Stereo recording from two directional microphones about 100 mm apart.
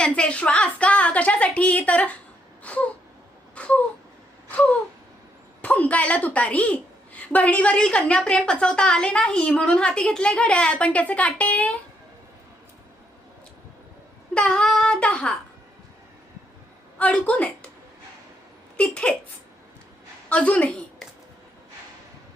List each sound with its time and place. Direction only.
0.0 s a woman's voice: 10° left (ahead or behind)
2.6 s a sound: 15° left (ahead or behind)
5.6 s a woman's voice: 15° left (ahead or behind)
14.3 s a woman's voice: 10° left (ahead or behind)
17.0 s a woman's voice: 10° left (ahead or behind)
18.8 s a woman's voice: 10° left (ahead or behind)
20.3 s a woman's voice: 15° left (ahead or behind)